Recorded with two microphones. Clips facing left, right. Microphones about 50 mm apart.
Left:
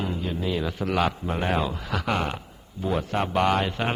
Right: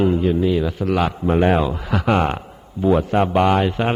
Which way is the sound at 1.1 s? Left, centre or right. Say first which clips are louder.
Right 10 dB; right.